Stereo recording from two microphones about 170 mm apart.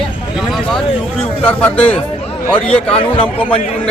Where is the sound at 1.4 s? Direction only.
10° left (ahead or behind).